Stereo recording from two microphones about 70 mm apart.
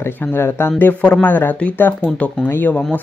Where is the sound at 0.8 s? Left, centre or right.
Left.